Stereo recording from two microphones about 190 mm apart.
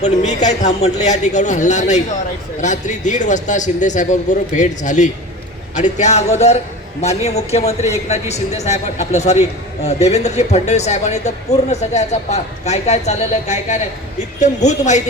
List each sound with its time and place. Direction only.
0.0 s speech: 40° left (ahead or behind)